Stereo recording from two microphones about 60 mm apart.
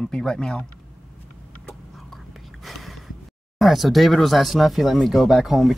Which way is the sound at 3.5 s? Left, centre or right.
Centre.